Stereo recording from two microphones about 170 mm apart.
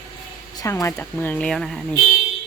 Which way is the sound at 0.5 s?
20° left (ahead or behind).